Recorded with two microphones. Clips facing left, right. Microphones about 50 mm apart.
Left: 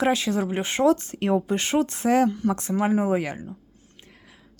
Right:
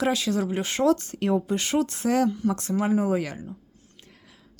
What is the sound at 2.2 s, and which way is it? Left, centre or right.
Speech, left.